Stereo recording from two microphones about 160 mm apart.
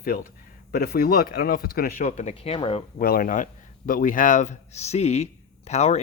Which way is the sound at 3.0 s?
65° left (ahead or behind).